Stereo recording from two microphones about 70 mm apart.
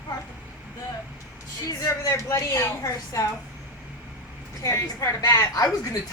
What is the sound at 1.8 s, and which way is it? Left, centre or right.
Speech, left.